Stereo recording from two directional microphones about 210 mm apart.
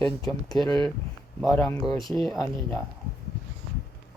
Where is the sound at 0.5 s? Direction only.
Centre (ahead or behind).